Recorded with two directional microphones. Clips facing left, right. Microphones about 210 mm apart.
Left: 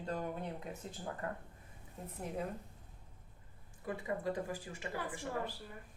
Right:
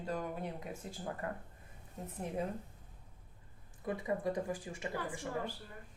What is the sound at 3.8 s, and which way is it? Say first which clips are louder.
Speech: right 2 dB; 20° right (ahead or behind).